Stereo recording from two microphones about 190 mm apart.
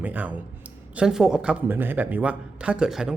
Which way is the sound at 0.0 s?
10° right (ahead or behind).